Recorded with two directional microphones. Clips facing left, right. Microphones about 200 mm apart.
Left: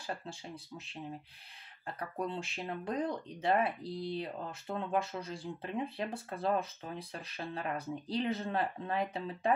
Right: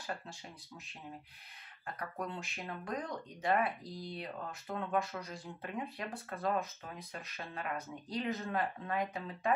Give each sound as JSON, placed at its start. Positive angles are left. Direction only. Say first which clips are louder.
{"t": 2.0, "sound": "speech", "louder": "left 4 dB", "side_deg": 30}